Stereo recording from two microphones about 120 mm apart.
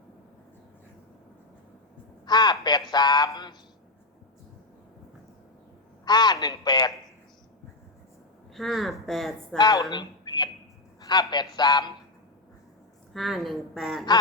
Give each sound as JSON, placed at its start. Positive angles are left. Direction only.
{"t": 2.2, "sound": "a man's voice", "side_deg": 35}
{"t": 6.1, "sound": "a man's voice", "side_deg": 35}
{"t": 8.5, "sound": "a woman's voice", "side_deg": 0}
{"t": 9.6, "sound": "a man's voice", "side_deg": 30}
{"t": 9.9, "sound": "a sound", "side_deg": 35}
{"t": 11.0, "sound": "a man's voice", "side_deg": 35}
{"t": 13.1, "sound": "a woman's voice", "side_deg": 0}